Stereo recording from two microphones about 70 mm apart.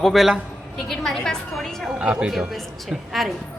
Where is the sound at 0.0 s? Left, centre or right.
Centre.